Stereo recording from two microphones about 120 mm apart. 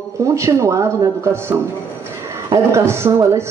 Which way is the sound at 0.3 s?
25° right (ahead or behind).